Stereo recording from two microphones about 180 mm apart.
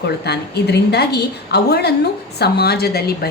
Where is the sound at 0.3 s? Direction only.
65° left (ahead or behind).